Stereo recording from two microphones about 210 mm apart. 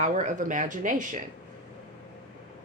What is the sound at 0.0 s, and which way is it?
A woman's voice, 35° right (ahead or behind).